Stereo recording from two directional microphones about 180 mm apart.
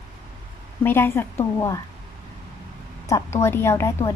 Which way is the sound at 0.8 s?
10° left (ahead or behind).